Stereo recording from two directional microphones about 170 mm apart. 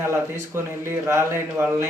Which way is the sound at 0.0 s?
15° right (ahead or behind).